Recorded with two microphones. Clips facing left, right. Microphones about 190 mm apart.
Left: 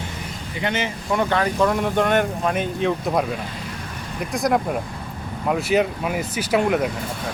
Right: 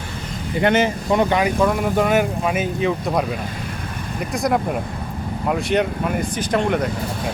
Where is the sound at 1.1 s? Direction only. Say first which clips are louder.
Right 2 dB; 15° right (ahead or behind); by 6.9 s 5° left (ahead or behind).